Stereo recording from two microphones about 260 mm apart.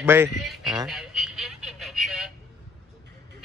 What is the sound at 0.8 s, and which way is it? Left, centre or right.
Telephone, centre.